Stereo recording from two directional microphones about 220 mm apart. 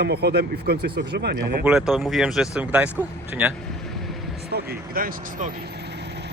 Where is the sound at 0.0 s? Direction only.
45° right (ahead or behind).